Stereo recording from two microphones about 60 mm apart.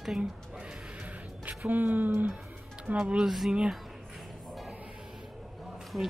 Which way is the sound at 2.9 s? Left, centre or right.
Centre.